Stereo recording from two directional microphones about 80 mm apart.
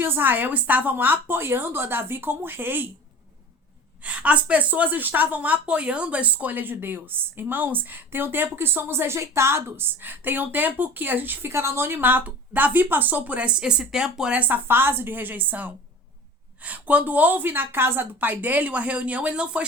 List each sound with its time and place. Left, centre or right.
0.0 s a woman's voice: right
4.0 s a woman's voice: centre
14.4 s a woman's voice: right